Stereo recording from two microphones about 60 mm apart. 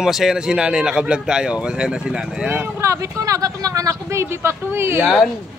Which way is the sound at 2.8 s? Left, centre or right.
Right.